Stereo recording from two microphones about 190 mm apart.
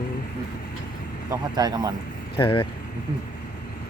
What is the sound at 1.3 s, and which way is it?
Speech, 20° right (ahead or behind).